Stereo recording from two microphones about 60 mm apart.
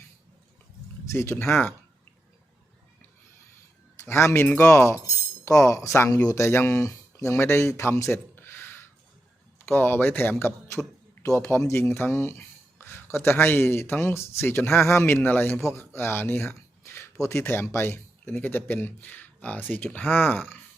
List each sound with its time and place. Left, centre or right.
1.1 s speech: left
4.0 s speech: left
8.0 s a sound: left
9.6 s speech: left
11.2 s speech: left
12.4 s speech: left